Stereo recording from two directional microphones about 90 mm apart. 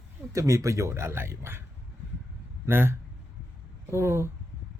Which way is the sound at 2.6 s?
25° right (ahead or behind).